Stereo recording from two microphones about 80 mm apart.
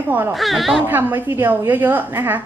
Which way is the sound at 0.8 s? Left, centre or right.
Right.